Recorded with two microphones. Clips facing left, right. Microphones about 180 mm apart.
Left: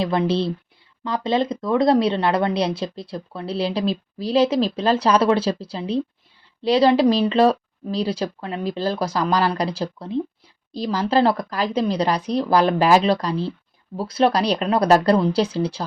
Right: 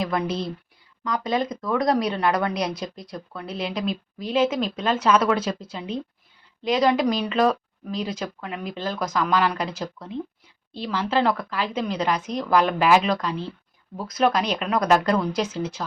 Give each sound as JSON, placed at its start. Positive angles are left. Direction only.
{"t": 0.0, "sound": "a woman's voice", "side_deg": 30}